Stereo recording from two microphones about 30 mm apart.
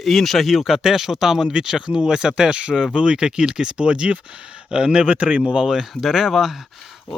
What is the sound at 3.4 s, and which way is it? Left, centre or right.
Speech, centre.